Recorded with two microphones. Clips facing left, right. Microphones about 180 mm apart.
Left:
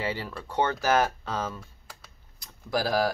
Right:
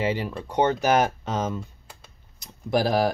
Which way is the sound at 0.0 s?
20° right (ahead or behind).